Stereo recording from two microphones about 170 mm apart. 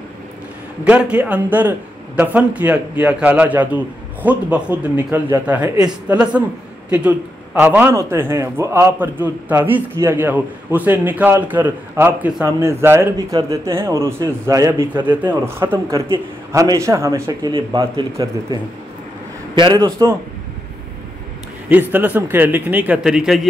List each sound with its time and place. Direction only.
0.8 s a man's voice: 10° right (ahead or behind); by 18.0 s 30° right (ahead or behind)
18.1 s a man's voice: 20° right (ahead or behind)
21.6 s a man's voice: 10° right (ahead or behind)